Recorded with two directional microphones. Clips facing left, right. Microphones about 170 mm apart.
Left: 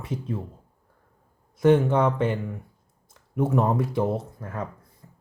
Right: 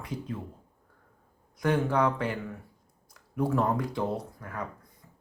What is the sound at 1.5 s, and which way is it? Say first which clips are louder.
Speech: left 7 dB; 25° left (ahead or behind).